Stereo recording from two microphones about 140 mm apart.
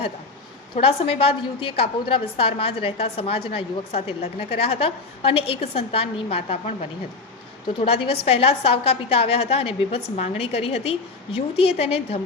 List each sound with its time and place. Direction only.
0.8 s a woman's voice: 45° left (ahead or behind)
7.9 s a woman's voice: 40° left (ahead or behind)